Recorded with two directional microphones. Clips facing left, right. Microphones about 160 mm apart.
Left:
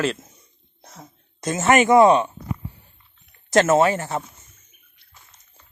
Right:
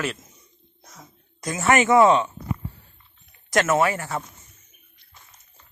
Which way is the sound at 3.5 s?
30° left (ahead or behind).